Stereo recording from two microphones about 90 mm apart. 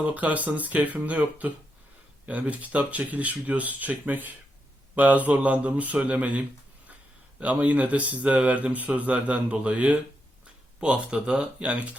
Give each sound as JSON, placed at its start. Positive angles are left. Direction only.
{"t": 0.0, "sound": "speech", "side_deg": -15}